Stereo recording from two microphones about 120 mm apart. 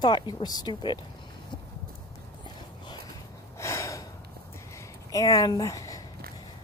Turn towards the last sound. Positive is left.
turn(degrees=30)  # may be behind; listen again after turning